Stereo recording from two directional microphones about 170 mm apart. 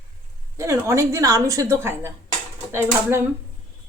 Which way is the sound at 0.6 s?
15° right (ahead or behind).